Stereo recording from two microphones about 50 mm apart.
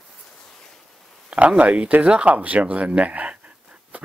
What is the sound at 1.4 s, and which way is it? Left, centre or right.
Speech, right.